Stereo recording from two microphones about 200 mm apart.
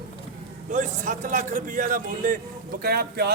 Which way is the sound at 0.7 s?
40° right (ahead or behind).